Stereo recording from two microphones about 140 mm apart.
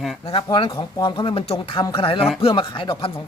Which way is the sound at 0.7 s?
25° left (ahead or behind).